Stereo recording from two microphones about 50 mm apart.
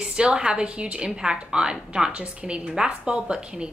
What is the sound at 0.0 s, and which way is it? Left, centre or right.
A woman's voice, centre.